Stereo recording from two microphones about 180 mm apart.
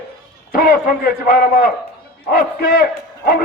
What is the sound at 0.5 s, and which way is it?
Speech, 55° left (ahead or behind).